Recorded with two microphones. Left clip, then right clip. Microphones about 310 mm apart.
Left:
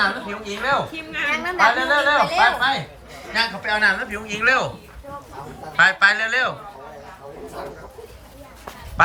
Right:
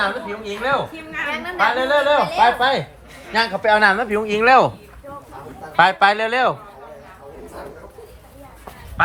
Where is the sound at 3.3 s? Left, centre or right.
Centre.